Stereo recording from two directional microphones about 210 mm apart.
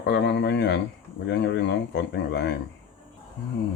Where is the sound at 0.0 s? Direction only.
55° left (ahead or behind).